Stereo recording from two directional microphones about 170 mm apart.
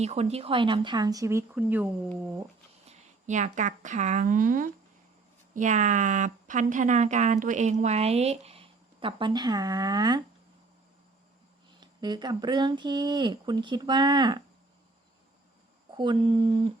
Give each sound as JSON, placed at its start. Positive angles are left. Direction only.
{"t": 0.0, "sound": "speech", "side_deg": -40}
{"t": 2.8, "sound": "a woman's voice", "side_deg": -45}
{"t": 11.8, "sound": "speech", "side_deg": -25}
{"t": 16.0, "sound": "speech", "side_deg": -25}